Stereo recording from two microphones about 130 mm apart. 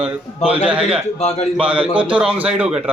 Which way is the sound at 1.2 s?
55° left (ahead or behind).